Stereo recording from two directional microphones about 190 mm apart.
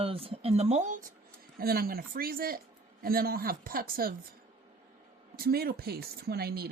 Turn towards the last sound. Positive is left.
turn(degrees=-55)  # may be behind; listen again after turning